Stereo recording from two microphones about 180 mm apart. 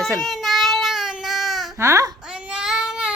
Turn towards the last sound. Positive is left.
turn(degrees=-5)  # may be behind; listen again after turning